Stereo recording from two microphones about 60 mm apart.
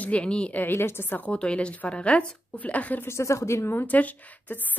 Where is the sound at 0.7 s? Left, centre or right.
Left.